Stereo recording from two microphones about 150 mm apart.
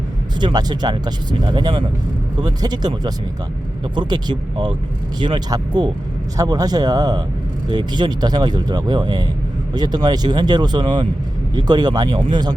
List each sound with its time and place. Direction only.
0.3 s speech: 30° right (ahead or behind)